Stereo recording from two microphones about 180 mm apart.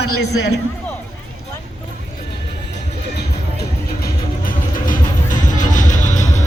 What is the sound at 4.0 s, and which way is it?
Music, 50° left (ahead or behind).